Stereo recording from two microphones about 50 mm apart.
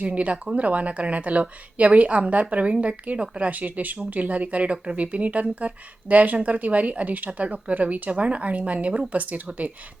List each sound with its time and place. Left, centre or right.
0.0 s speech: right